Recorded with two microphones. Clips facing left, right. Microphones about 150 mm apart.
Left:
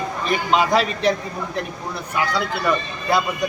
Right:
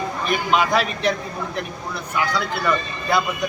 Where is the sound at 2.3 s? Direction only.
15° left (ahead or behind).